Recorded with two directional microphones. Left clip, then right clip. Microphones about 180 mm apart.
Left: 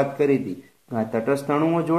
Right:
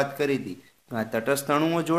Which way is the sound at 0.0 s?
25° right (ahead or behind).